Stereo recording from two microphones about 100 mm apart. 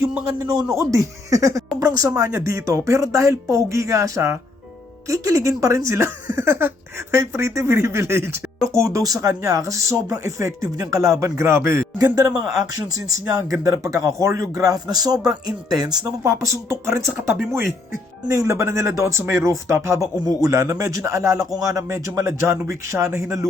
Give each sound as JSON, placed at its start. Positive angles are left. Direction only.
{"t": 0.8, "sound": "speech", "side_deg": -35}
{"t": 11.9, "sound": "speech", "side_deg": -40}
{"t": 16.2, "sound": "speech", "side_deg": -30}